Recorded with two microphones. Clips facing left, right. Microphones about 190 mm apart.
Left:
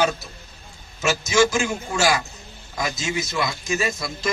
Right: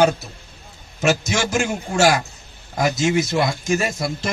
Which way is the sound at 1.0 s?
60° right (ahead or behind).